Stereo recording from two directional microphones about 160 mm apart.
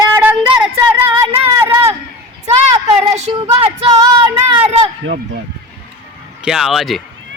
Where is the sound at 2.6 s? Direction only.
45° right (ahead or behind).